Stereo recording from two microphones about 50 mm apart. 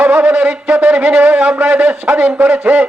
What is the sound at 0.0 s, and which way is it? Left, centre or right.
Speech, right.